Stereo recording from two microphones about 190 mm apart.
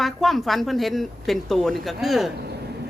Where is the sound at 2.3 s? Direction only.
60° right (ahead or behind).